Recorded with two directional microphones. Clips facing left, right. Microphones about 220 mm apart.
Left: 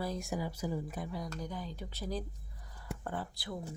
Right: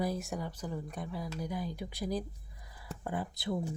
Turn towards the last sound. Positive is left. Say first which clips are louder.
# right 6 dB
turn(degrees=-20)  # may be behind; listen again after turning